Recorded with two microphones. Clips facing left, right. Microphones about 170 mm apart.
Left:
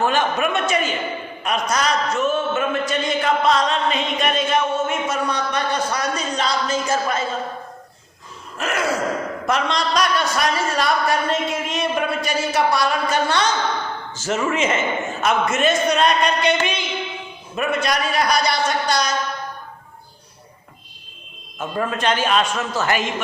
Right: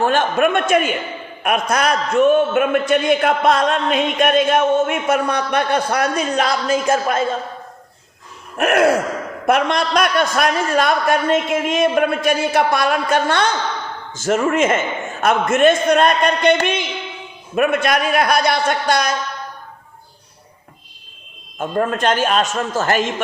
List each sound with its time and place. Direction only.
0.0 s a man's voice: 50° right (ahead or behind)
8.5 s a man's voice: 60° right (ahead or behind)
21.6 s a man's voice: 50° right (ahead or behind)